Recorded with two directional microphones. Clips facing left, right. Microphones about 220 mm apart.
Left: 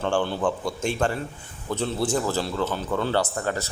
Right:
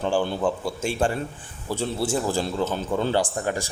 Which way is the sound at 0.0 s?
10° right (ahead or behind).